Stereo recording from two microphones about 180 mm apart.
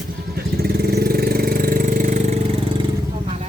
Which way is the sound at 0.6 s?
60° right (ahead or behind).